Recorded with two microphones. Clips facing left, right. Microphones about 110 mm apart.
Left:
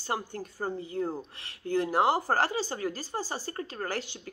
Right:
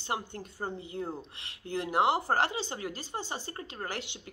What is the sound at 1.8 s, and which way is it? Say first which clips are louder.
Speech: left 2 dB; 35° left (ahead or behind).